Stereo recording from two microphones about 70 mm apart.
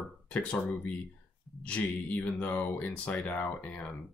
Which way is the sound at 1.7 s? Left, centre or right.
Centre.